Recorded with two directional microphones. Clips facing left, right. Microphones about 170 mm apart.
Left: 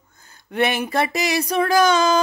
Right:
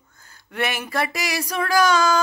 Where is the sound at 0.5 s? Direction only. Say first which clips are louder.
Left 5 dB; 25° left (ahead or behind).